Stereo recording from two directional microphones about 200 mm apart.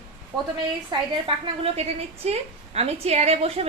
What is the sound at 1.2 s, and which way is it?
A woman's voice, 30° right (ahead or behind).